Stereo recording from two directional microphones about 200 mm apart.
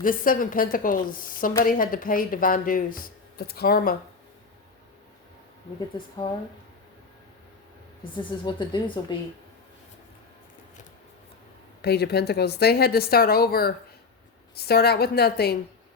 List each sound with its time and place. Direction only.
0.0 s speech: 45° left (ahead or behind)
8.1 s a woman's voice: 25° left (ahead or behind)
11.8 s speech: 55° left (ahead or behind)